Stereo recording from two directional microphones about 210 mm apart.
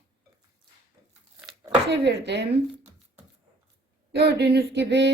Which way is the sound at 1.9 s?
55° right (ahead or behind).